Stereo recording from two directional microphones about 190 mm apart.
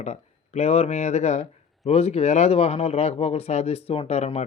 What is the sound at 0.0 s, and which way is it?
A man's voice, 35° left (ahead or behind).